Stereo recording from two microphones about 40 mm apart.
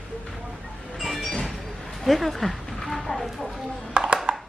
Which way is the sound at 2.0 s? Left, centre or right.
Centre.